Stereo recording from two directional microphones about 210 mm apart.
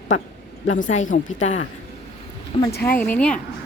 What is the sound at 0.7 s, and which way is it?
Speech, 35° left (ahead or behind).